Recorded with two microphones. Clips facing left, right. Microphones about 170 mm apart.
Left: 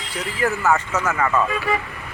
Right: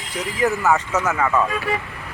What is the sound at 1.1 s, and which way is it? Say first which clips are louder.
Speech: even; centre (ahead or behind).